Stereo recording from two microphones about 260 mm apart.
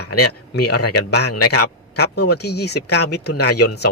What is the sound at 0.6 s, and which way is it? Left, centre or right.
Speech, left.